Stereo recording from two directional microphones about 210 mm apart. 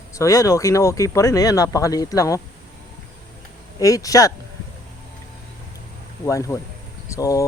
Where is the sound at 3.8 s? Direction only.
15° left (ahead or behind).